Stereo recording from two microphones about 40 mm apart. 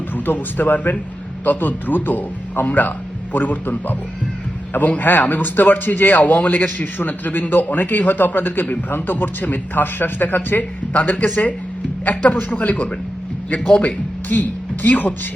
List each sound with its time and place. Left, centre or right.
0.1 s a man's voice: left
10.9 s speech: left